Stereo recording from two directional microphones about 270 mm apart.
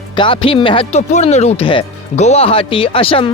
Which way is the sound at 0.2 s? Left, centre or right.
Centre.